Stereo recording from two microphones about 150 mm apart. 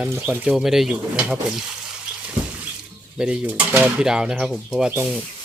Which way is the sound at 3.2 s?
10° right (ahead or behind).